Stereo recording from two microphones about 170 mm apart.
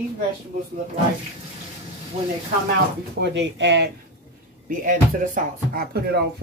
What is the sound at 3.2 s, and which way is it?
Speech, 90° right.